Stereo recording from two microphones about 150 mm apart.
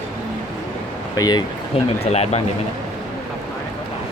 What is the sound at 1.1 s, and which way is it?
Speech, 25° left (ahead or behind).